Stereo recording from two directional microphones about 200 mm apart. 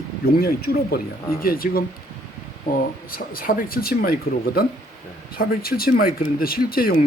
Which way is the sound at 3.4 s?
45° left (ahead or behind).